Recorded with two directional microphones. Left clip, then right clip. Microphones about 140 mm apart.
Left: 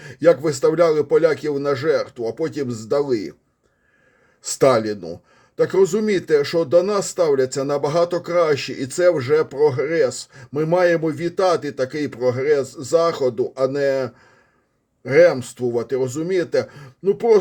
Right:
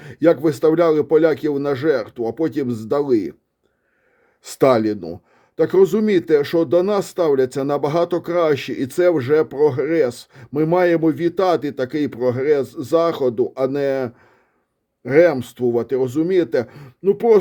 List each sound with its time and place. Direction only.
0.0 s speech: 45° right (ahead or behind)
4.4 s speech: 45° right (ahead or behind)